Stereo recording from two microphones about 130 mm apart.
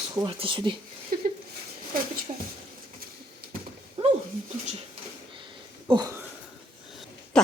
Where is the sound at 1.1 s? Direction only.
90° right.